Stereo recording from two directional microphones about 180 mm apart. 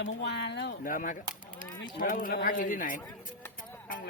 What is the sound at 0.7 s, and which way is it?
Speech, 50° left (ahead or behind).